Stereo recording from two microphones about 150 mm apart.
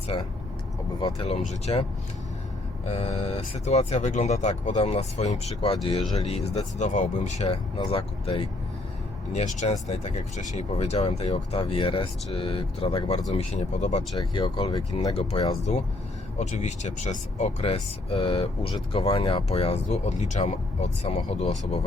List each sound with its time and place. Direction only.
0.1 s speech: 35° left (ahead or behind)
2.8 s speech: 45° left (ahead or behind)
6.7 s speech: 55° left (ahead or behind)
7.9 s speech: 40° left (ahead or behind)
9.3 s speech: 50° left (ahead or behind); by 13.3 s 30° left (ahead or behind)
13.3 s speech: 45° left (ahead or behind)
14.2 s speech: 30° left (ahead or behind)
15.1 s speech: 40° left (ahead or behind)